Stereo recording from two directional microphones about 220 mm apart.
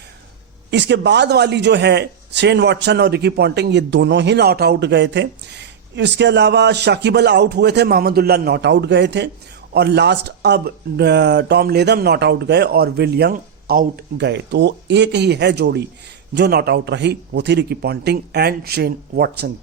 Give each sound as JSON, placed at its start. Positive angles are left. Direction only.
{"t": 0.7, "sound": "speech", "side_deg": -55}